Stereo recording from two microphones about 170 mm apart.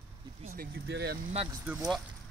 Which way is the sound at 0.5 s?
75° right (ahead or behind).